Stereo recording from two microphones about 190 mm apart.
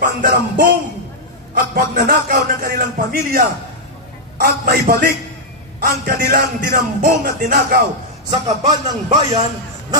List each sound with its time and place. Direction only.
0.0 s a man's voice: 45° right (ahead or behind)
8.3 s speech: 25° right (ahead or behind)